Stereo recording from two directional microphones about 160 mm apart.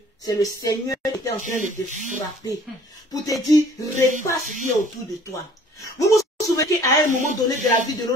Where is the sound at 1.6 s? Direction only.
50° right (ahead or behind).